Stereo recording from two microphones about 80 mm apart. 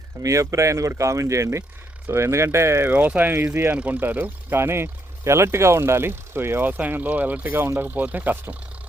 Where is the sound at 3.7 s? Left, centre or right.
Centre.